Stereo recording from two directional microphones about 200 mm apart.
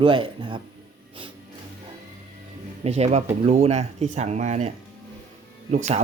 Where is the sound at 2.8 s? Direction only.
30° right (ahead or behind).